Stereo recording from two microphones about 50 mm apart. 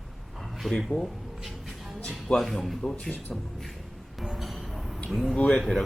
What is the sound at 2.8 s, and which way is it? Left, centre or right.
Speech, left.